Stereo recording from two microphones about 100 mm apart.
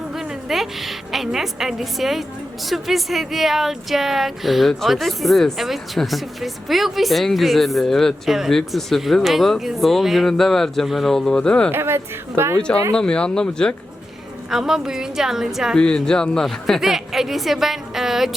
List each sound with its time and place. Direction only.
0.1 s a woman's voice: 5° right (ahead or behind)
11.7 s speech: 25° right (ahead or behind)
12.9 s speech: 10° left (ahead or behind)
14.5 s speech: 5° right (ahead or behind)
15.8 s speech: 10° left (ahead or behind)